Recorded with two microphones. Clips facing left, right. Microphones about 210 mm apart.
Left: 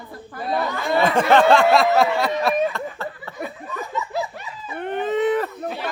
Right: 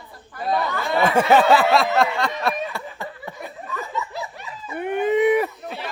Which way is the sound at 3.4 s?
Centre (ahead or behind).